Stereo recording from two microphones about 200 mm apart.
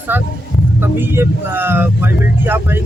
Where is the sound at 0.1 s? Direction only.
10° right (ahead or behind).